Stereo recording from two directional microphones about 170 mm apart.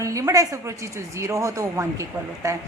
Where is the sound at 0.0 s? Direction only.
20° right (ahead or behind).